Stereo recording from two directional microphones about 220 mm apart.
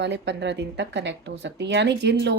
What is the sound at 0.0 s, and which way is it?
Speech, 50° right (ahead or behind).